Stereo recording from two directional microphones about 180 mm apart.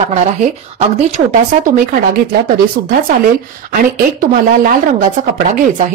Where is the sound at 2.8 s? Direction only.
55° right (ahead or behind).